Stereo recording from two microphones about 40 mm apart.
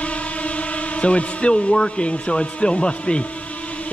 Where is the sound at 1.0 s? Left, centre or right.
Left.